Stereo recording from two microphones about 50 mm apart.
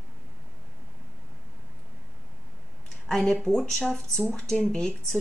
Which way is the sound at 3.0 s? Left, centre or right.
Centre.